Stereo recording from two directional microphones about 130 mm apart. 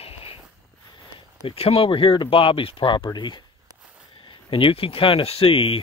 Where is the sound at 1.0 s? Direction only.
40° left (ahead or behind).